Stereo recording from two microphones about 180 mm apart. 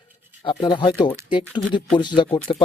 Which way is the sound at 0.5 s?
25° left (ahead or behind).